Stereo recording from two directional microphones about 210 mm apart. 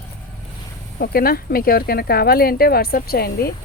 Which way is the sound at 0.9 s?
45° left (ahead or behind).